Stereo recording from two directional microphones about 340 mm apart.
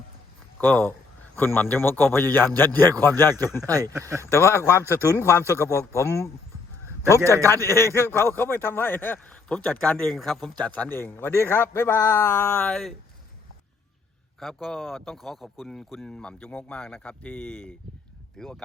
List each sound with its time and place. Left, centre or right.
0.6 s a man's voice: centre
3.7 s speech: centre
4.3 s a man's voice: centre
7.2 s speech: centre
7.4 s a man's voice: centre
14.3 s speech: centre